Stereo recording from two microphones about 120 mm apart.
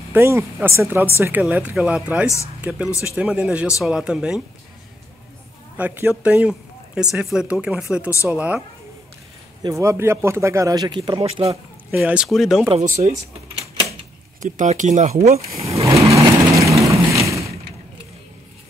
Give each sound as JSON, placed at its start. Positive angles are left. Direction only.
{"t": 0.1, "sound": "a man's voice", "side_deg": -20}
{"t": 2.2, "sound": "speech", "side_deg": 25}
{"t": 3.0, "sound": "speech", "side_deg": -10}
{"t": 5.8, "sound": "speech", "side_deg": -15}
{"t": 9.6, "sound": "a man's voice", "side_deg": -30}
{"t": 11.9, "sound": "speech", "side_deg": -10}
{"t": 12.8, "sound": "speech", "side_deg": -90}
{"t": 14.4, "sound": "speech", "side_deg": -90}
{"t": 15.5, "sound": "vehicle", "side_deg": -25}